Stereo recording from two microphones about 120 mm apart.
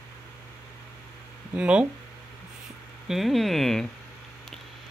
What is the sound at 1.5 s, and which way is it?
Speech, 10° right (ahead or behind).